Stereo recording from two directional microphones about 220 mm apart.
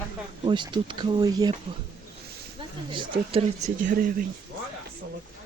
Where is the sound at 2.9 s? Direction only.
20° right (ahead or behind); by 4.1 s 35° right (ahead or behind).